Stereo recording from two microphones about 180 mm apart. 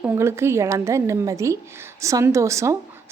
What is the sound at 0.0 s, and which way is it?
A woman's voice, 10° right (ahead or behind).